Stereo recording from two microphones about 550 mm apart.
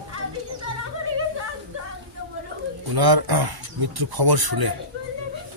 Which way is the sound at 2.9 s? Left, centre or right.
Right.